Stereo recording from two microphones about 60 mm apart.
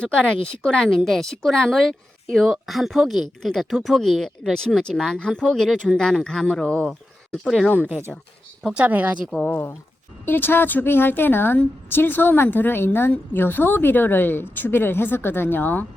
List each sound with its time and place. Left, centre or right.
0.0 s a woman's voice: centre
7.4 s a woman's voice: centre
7.8 s speech: right
9.2 s a woman's voice: centre
10.2 s a woman's voice: left